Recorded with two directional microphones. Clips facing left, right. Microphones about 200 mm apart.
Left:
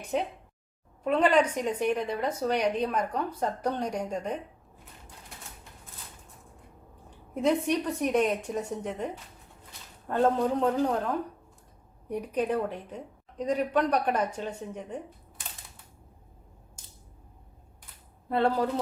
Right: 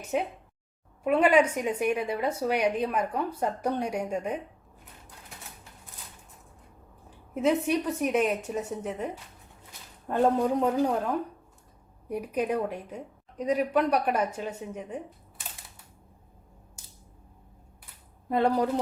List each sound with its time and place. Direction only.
0.1 s a woman's voice: 5° right (ahead or behind)
7.4 s a woman's voice: 5° right (ahead or behind)
10.1 s a woman's voice: 15° right (ahead or behind)
18.3 s a woman's voice: 15° right (ahead or behind)